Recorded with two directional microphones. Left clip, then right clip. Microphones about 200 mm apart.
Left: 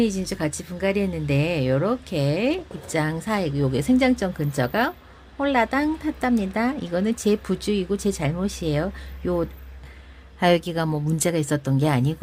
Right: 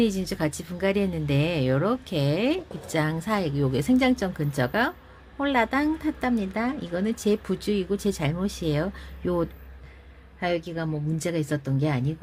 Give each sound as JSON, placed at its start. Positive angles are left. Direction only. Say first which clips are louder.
{"t": 0.0, "sound": "speech", "louder": "left 1 dB", "side_deg": 0}
{"t": 10.4, "sound": "a woman's voice", "louder": "left 7 dB", "side_deg": 25}